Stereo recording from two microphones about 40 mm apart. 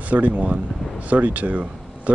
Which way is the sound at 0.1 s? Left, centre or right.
Right.